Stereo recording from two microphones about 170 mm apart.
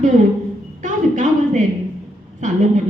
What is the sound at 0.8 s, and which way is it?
Speech, 45° right (ahead or behind).